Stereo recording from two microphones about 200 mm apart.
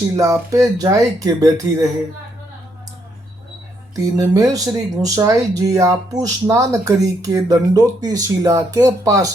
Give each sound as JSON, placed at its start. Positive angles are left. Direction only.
{"t": 0.2, "sound": "speech", "side_deg": -15}
{"t": 3.9, "sound": "speech", "side_deg": -15}